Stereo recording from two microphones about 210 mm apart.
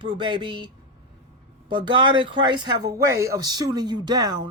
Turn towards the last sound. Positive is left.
turn(degrees=-20)  # may be behind; listen again after turning